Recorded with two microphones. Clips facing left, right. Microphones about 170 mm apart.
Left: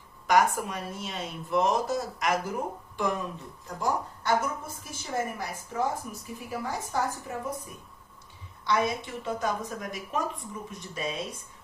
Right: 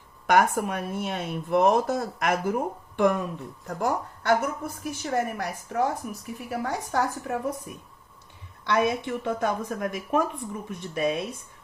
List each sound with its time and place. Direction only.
0.3 s speech: 55° right (ahead or behind)
8.6 s speech: 65° right (ahead or behind)